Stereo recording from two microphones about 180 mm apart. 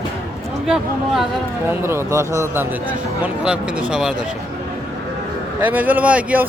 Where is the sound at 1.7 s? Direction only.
15° right (ahead or behind).